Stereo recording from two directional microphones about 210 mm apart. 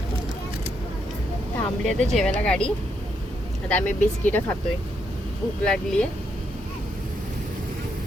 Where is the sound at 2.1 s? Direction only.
5° left (ahead or behind).